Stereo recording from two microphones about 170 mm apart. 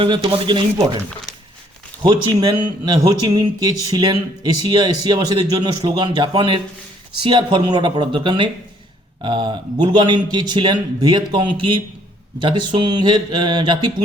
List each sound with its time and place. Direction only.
0.0 s a man's voice: 30° right (ahead or behind)
2.4 s a man's voice: 25° right (ahead or behind)